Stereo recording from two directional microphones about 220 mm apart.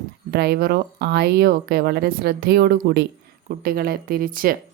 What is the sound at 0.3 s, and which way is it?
A woman's voice, 45° right (ahead or behind).